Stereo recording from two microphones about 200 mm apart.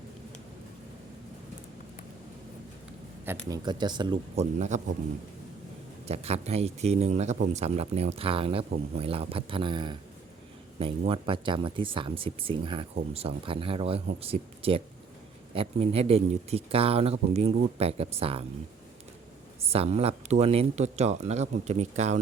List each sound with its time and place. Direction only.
3.5 s speech: 20° right (ahead or behind)
4.7 s speech: 35° right (ahead or behind)
6.1 s speech: 30° right (ahead or behind)
19.6 s speech: 30° right (ahead or behind)